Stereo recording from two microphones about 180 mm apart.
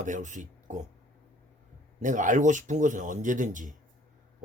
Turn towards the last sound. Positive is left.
turn(degrees=-45)  # may be behind; listen again after turning